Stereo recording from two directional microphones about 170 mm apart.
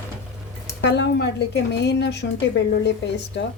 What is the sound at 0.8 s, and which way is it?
A woman's voice, 90° left.